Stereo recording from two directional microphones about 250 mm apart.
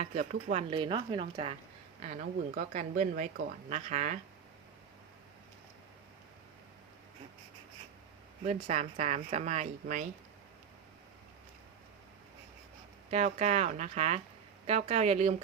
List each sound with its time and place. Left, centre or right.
0.0 s speech: right
0.7 s speech: centre
2.6 s speech: right
8.4 s speech: right
13.1 s speech: right